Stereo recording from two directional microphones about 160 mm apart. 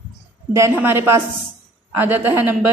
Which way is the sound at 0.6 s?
15° right (ahead or behind).